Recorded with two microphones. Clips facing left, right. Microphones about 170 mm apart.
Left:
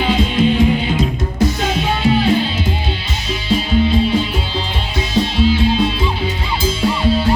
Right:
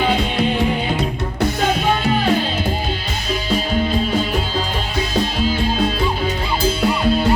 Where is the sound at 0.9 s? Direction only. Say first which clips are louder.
Left 3 dB; 60° right (ahead or behind).